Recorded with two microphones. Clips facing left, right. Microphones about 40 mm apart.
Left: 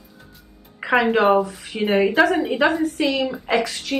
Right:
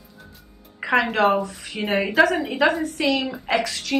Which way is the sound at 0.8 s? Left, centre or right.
Centre.